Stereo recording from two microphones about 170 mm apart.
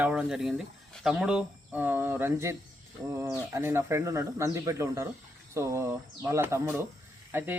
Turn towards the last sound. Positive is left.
turn(degrees=-10)  # may be behind; listen again after turning